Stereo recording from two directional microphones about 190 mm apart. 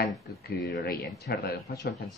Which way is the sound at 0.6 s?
60° left (ahead or behind).